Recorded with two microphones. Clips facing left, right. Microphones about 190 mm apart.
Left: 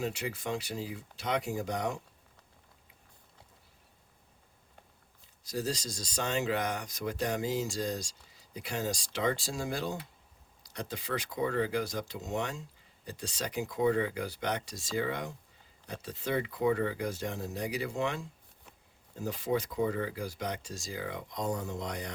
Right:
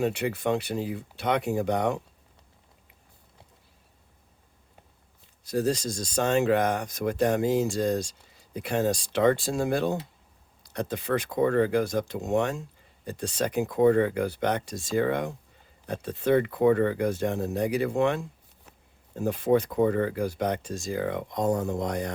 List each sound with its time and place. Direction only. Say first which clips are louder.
0.0 s speech: right 9 dB; 60° right (ahead or behind)
5.5 s speech: right 9 dB; 55° right (ahead or behind)